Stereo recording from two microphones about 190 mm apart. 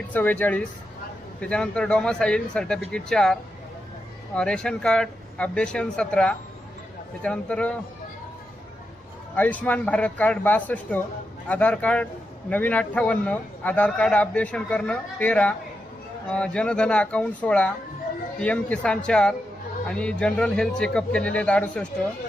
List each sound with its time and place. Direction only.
0.1 s a man's voice: 10° left (ahead or behind)
4.4 s a man's voice: 5° left (ahead or behind)
9.3 s a man's voice: 10° left (ahead or behind)